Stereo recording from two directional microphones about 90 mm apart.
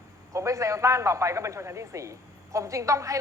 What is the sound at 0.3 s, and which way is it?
A man's voice, 35° right (ahead or behind).